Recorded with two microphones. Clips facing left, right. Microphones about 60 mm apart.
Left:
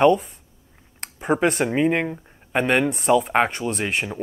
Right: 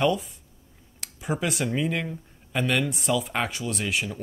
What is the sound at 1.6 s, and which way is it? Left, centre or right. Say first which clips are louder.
Speech: left 7 dB; left.